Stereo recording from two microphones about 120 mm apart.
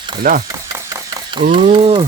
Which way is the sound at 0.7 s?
30° right (ahead or behind).